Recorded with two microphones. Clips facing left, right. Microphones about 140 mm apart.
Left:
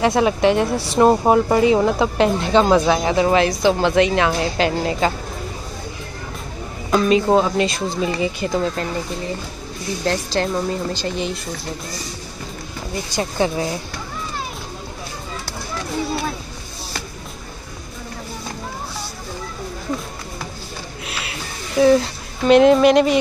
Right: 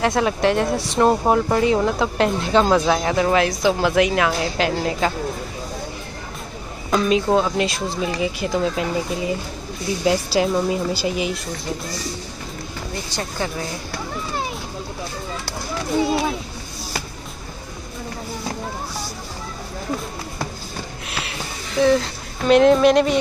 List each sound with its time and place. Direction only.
0.0 s speech: centre (ahead or behind)
6.9 s a woman's voice: centre (ahead or behind)
13.1 s speech: 15° left (ahead or behind)
16.0 s speech: 20° right (ahead or behind)
21.2 s a sound: 5° left (ahead or behind)
22.5 s speech: centre (ahead or behind)